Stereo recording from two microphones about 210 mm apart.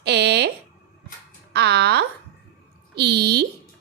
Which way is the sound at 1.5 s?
50° right (ahead or behind).